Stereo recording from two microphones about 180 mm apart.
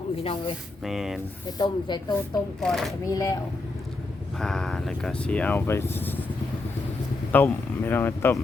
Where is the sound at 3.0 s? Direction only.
20° left (ahead or behind).